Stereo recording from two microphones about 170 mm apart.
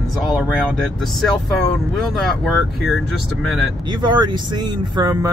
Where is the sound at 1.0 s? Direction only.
Centre (ahead or behind).